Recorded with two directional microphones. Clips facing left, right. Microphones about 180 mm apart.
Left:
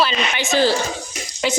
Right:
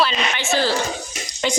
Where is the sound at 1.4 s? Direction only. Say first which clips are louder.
Left 1 dB; 5° left (ahead or behind).